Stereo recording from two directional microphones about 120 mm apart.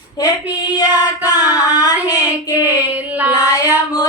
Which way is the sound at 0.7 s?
35° left (ahead or behind).